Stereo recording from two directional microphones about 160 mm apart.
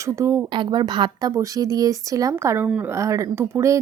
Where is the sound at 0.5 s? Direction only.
30° right (ahead or behind).